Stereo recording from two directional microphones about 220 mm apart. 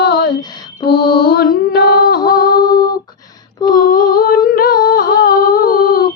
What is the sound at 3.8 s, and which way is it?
Humming, 40° left (ahead or behind).